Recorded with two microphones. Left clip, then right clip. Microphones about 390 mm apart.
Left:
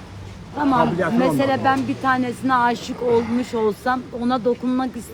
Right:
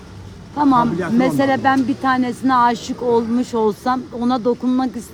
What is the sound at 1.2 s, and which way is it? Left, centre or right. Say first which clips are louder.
A woman's voice: right 3 dB; right.